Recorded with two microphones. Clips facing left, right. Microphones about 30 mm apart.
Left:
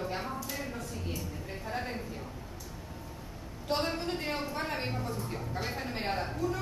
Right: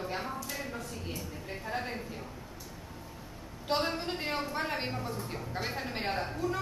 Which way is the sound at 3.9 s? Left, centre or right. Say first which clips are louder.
Even; centre.